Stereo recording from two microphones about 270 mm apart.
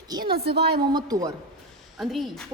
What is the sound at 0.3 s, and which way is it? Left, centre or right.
Speech, right.